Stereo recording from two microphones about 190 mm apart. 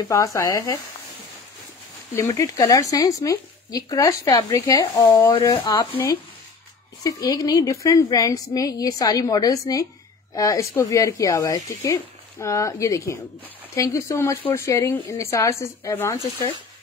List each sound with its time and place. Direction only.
0.1 s speech: 15° left (ahead or behind)
2.1 s a woman's voice: 15° left (ahead or behind)